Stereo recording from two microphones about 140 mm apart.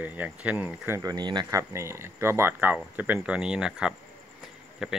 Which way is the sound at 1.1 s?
30° right (ahead or behind).